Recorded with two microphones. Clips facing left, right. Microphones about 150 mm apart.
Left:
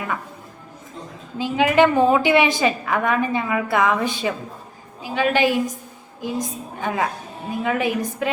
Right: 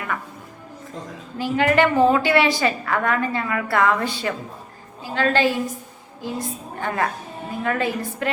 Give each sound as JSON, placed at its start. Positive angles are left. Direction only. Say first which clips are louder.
{"t": 1.4, "sound": "a woman's voice", "louder": "left 2 dB", "side_deg": 15}